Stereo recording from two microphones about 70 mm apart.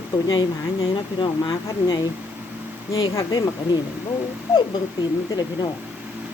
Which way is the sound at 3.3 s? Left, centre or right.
Left.